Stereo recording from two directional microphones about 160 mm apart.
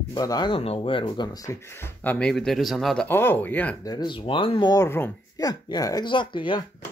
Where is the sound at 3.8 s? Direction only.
25° left (ahead or behind).